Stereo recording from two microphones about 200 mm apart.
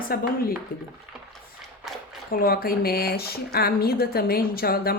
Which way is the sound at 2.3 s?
45° left (ahead or behind).